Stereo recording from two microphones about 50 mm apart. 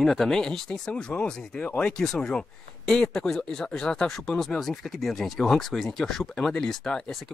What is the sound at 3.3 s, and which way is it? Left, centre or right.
Speech, centre.